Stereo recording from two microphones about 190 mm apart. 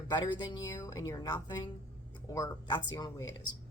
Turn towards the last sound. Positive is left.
turn(degrees=20)  # may be behind; listen again after turning